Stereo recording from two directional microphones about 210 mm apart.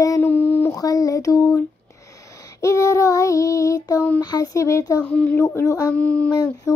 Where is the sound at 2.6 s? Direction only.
15° left (ahead or behind).